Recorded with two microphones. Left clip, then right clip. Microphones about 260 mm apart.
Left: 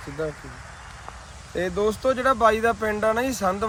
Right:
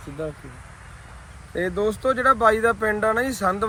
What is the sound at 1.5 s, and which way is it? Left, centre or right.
Speech, centre.